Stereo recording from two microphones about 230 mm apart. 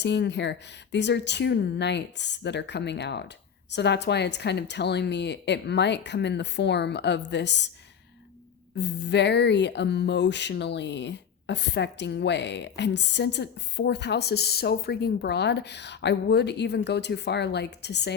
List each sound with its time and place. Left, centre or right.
0.0 s speech: left
8.8 s speech: left